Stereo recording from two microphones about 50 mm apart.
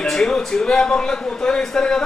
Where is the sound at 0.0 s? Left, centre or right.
Centre.